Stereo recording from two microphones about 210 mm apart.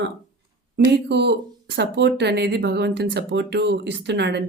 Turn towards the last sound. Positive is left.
turn(degrees=-50)  # may be behind; listen again after turning